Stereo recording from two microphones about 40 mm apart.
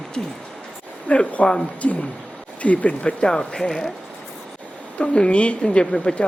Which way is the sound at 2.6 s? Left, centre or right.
Left.